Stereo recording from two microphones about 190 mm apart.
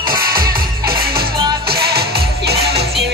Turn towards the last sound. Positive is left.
turn(degrees=-60)  # may be behind; listen again after turning